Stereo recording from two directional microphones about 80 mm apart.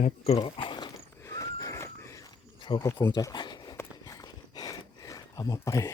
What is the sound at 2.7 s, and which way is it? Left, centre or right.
Speech, left.